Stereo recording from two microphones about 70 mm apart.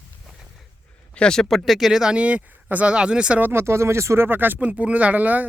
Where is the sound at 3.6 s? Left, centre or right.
Right.